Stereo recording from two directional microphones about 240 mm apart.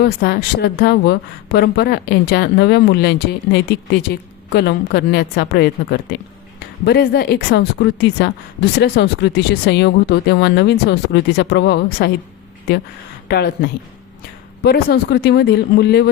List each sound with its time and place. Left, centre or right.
0.0 s a woman's voice: left
13.2 s speech: left